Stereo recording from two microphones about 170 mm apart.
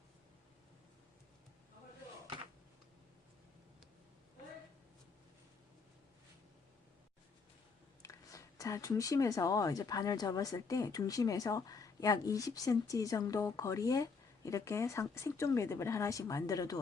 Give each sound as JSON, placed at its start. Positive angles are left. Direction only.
{"t": 8.0, "sound": "speech", "side_deg": 20}